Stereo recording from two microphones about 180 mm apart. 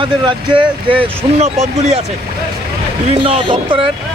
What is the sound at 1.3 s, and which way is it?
Speech, 35° right (ahead or behind).